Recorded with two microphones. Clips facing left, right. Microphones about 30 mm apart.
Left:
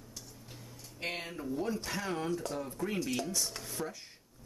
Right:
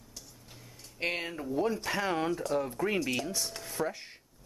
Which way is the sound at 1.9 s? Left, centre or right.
Right.